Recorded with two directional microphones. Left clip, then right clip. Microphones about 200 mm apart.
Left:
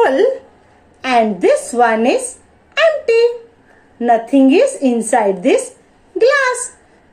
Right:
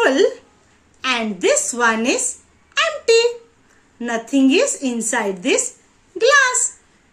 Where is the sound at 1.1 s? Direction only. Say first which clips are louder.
Left 6 dB; 25° right (ahead or behind).